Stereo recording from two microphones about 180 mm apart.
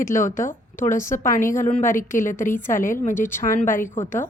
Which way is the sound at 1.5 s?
45° left (ahead or behind).